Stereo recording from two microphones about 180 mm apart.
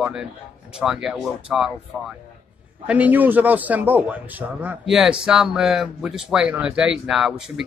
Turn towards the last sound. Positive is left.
turn(degrees=0)  # may be behind; listen again after turning